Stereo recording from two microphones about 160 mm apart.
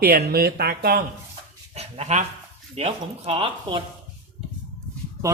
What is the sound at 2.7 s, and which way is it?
Speech, 40° right (ahead or behind).